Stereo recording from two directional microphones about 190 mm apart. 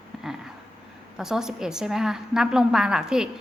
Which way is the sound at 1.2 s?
5° right (ahead or behind).